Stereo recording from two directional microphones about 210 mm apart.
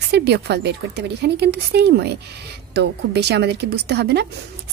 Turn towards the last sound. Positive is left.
turn(degrees=-50)  # may be behind; listen again after turning